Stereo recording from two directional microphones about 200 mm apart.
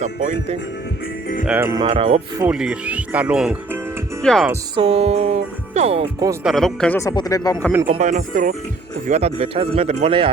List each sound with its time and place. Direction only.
0.0 s speech: 40° right (ahead or behind)
1.5 s speech: 10° right (ahead or behind)
1.8 s speech: 25° right (ahead or behind)
2.4 s speech: 5° right (ahead or behind)
4.7 s music: 30° right (ahead or behind)
6.4 s speech: centre (ahead or behind)
7.0 s speech: 20° left (ahead or behind)
7.9 s speech: 35° right (ahead or behind)